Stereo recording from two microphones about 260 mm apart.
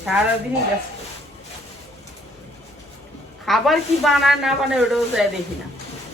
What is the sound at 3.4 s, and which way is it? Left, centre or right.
A woman's voice, centre.